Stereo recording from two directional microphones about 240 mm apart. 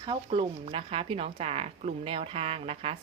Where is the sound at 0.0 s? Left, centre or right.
Right.